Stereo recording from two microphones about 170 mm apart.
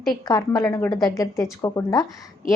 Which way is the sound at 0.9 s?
25° left (ahead or behind).